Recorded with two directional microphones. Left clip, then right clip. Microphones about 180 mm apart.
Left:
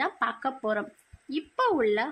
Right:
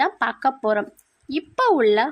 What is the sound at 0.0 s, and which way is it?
Speech, 40° right (ahead or behind).